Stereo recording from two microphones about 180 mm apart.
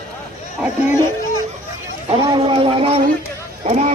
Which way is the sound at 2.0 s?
25° right (ahead or behind).